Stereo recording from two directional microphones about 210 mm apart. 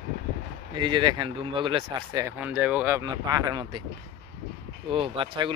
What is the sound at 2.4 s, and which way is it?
Speech, 5° right (ahead or behind).